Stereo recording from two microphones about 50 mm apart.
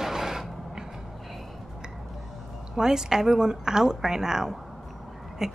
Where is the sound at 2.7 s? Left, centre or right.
Centre.